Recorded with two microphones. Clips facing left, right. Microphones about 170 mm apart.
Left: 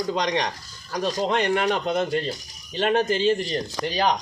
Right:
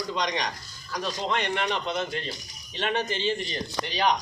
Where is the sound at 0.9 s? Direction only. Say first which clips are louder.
Left 5 dB; 40° left (ahead or behind).